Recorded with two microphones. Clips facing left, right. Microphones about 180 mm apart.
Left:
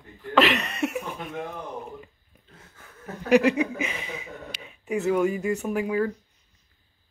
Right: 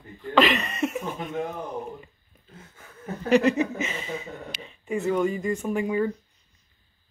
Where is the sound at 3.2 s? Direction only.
10° left (ahead or behind).